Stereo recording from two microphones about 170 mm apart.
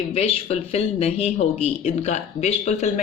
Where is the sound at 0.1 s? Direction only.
35° left (ahead or behind).